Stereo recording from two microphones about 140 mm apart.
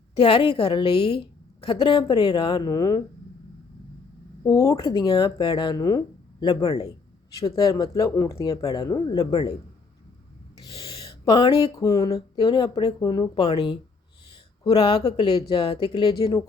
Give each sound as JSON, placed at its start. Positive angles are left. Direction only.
{"t": 0.2, "sound": "speech", "side_deg": 35}
{"t": 4.4, "sound": "speech", "side_deg": 20}
{"t": 11.3, "sound": "speech", "side_deg": 30}